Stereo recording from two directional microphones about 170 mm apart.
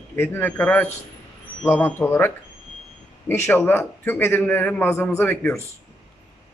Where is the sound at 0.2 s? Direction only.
10° left (ahead or behind).